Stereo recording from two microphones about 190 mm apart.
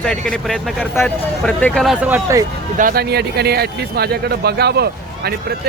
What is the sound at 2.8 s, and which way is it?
Speech, 50° right (ahead or behind).